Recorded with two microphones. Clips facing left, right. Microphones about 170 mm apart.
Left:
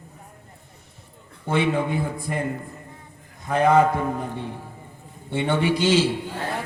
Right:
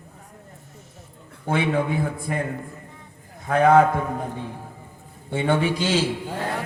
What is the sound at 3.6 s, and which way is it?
Speech, 55° right (ahead or behind).